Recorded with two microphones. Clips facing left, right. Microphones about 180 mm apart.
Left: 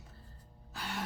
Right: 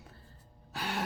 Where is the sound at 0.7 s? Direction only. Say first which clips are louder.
Right 5 dB; 75° right (ahead or behind).